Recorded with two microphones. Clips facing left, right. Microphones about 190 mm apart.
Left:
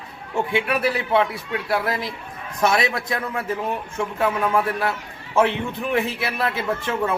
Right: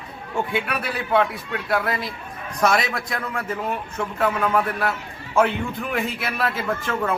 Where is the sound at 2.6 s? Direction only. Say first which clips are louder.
Left 1 dB; 25° left (ahead or behind).